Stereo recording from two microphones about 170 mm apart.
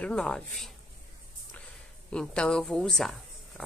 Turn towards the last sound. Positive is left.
turn(degrees=0)  # may be behind; listen again after turning